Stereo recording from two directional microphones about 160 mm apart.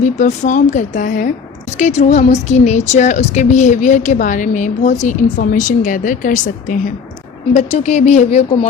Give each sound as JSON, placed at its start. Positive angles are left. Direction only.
{"t": 0.0, "sound": "a woman's voice", "side_deg": 50}